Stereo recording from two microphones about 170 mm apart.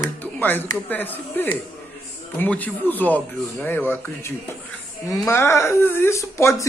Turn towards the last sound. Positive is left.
turn(degrees=20)  # may be behind; listen again after turning